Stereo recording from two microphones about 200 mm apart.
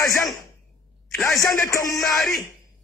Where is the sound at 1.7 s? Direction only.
15° left (ahead or behind).